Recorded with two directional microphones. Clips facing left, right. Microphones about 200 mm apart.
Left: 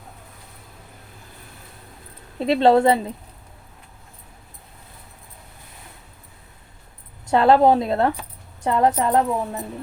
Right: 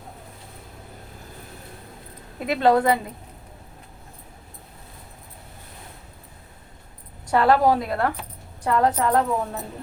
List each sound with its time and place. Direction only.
2.4 s a woman's voice: 25° left (ahead or behind)
7.3 s a woman's voice: 25° left (ahead or behind)